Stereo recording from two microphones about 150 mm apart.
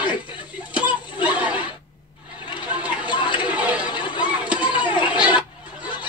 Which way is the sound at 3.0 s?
30° left (ahead or behind).